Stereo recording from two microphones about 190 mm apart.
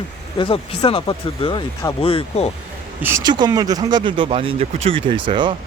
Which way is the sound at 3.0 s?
20° right (ahead or behind).